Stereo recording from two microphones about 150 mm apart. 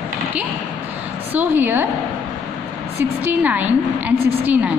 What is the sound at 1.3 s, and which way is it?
Speech, 15° right (ahead or behind).